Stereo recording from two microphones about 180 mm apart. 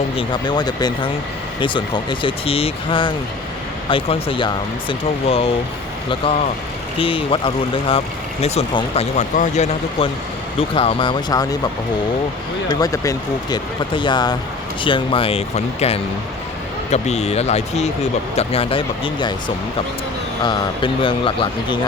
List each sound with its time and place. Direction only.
0.2 s speech: 25° left (ahead or behind); by 9.6 s 45° left (ahead or behind)
10.0 s speech: 30° left (ahead or behind)
12.6 s speech: 20° left (ahead or behind)